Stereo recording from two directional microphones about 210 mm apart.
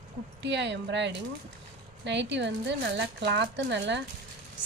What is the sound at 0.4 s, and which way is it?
Speech, 55° right (ahead or behind).